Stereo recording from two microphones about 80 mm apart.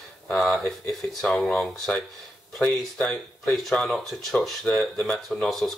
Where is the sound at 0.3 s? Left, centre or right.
Centre.